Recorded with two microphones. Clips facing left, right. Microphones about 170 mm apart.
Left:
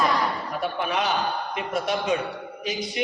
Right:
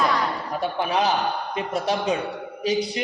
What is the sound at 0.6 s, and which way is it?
A man's voice, 30° right (ahead or behind).